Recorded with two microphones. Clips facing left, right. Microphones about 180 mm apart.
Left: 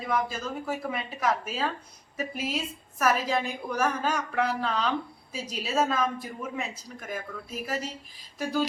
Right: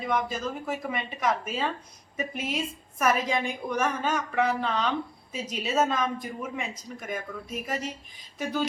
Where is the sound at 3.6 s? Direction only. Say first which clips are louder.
Right 2 dB; 20° right (ahead or behind).